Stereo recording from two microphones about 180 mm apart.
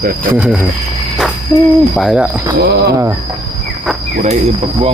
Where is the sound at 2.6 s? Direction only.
65° right (ahead or behind).